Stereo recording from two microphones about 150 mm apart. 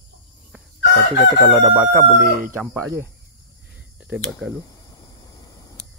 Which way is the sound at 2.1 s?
70° right (ahead or behind).